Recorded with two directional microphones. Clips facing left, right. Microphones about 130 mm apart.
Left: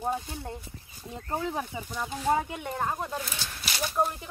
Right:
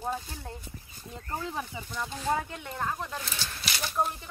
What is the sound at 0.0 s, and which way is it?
Speech, 20° left (ahead or behind).